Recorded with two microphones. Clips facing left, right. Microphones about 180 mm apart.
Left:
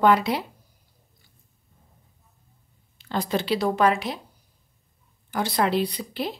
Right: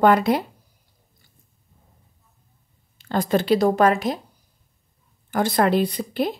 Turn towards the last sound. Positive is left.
turn(degrees=-50)  # may be behind; listen again after turning